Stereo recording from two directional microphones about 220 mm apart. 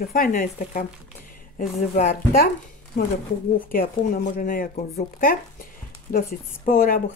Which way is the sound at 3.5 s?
40° left (ahead or behind).